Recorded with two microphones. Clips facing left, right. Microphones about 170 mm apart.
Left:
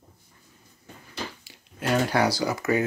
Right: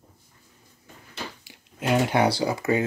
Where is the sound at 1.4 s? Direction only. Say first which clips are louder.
Right 2 dB; 15° right (ahead or behind).